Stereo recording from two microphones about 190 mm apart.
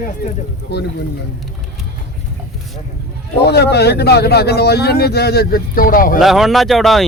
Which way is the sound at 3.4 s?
60° left (ahead or behind).